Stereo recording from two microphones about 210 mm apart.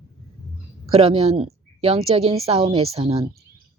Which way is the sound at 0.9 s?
30° right (ahead or behind).